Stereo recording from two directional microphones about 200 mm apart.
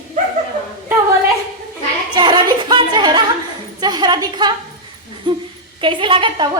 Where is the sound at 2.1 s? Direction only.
20° right (ahead or behind).